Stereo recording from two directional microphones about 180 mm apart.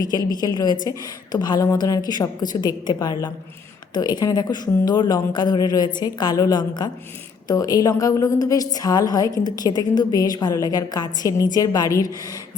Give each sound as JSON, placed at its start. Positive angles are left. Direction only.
{"t": 0.3, "sound": "a woman's voice", "side_deg": 25}